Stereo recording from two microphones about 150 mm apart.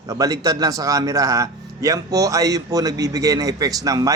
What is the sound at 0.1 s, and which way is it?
Speech, 25° right (ahead or behind).